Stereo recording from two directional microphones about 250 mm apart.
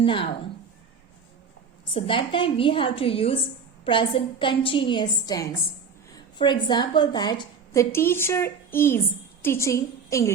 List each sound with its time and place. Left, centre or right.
0.0 s a woman's voice: left
1.9 s a woman's voice: left